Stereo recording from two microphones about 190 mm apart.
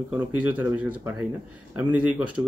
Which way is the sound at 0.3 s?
10° right (ahead or behind).